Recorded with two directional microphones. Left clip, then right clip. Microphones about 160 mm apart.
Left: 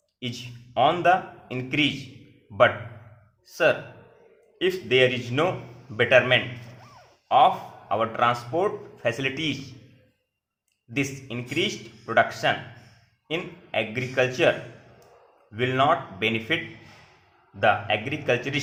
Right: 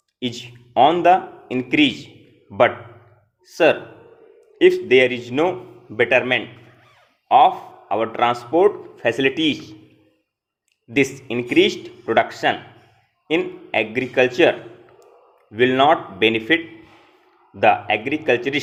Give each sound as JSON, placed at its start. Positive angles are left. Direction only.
{"t": 0.2, "sound": "a man's voice", "side_deg": -30}
{"t": 3.5, "sound": "a man's voice", "side_deg": -30}
{"t": 10.9, "sound": "a man's voice", "side_deg": -30}
{"t": 15.5, "sound": "a man's voice", "side_deg": -30}
{"t": 17.6, "sound": "a man's voice", "side_deg": -30}